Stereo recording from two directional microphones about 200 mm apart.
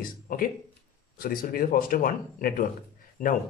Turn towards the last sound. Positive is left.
turn(degrees=45)  # may be behind; listen again after turning